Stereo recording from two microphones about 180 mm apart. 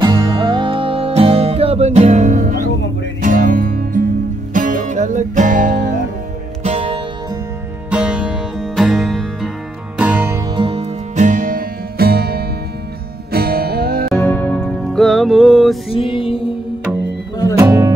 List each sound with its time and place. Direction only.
0.0 s music: 25° right (ahead or behind); by 5.9 s 45° right (ahead or behind)
6.6 s music: 35° right (ahead or behind)
7.9 s music: 5° right (ahead or behind)
10.5 s music: 30° right (ahead or behind); by 14.0 s 60° right (ahead or behind)
14.1 s music: 10° left (ahead or behind)
15.9 s music: 30° left (ahead or behind)
17.6 s music: 20° right (ahead or behind)